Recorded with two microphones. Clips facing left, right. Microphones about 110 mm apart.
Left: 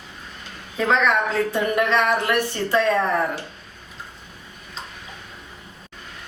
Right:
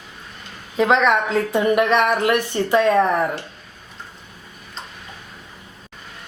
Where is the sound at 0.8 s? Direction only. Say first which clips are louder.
Right 3 dB; 20° right (ahead or behind).